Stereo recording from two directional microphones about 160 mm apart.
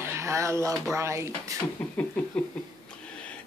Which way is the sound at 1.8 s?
10° left (ahead or behind).